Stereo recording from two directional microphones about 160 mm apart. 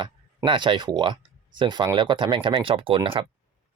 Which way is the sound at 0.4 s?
30° right (ahead or behind).